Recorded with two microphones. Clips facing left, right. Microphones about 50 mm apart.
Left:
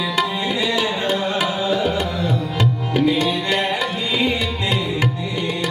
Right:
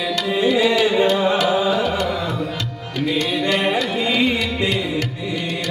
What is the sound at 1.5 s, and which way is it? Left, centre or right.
Music, centre.